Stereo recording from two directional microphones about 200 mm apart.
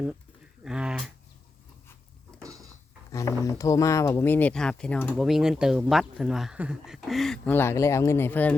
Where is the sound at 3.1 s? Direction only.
15° left (ahead or behind).